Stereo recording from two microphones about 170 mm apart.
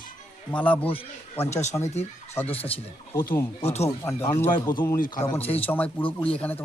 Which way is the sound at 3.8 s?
15° left (ahead or behind).